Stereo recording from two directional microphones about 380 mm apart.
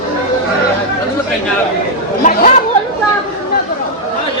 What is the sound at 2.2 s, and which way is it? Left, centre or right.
Chatter, left.